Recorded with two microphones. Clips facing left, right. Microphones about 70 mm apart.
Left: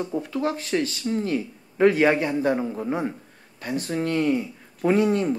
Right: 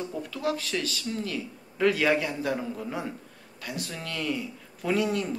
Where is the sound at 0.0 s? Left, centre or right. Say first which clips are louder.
Left 5 dB; left.